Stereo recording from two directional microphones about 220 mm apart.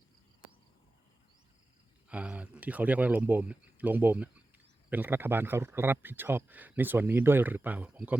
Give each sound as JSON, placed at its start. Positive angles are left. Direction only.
{"t": 2.0, "sound": "speech", "side_deg": -5}